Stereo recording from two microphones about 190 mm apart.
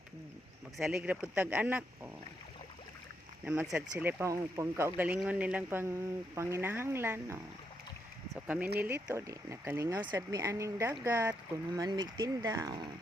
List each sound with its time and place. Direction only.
0.9 s speech: 10° right (ahead or behind)
3.4 s speech: 10° right (ahead or behind)